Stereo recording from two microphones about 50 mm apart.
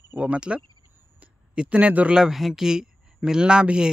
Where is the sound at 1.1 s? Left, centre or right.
Right.